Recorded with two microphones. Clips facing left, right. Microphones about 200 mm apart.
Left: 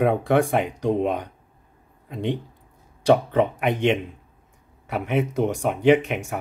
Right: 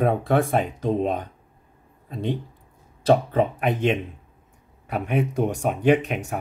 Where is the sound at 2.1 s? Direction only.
15° left (ahead or behind).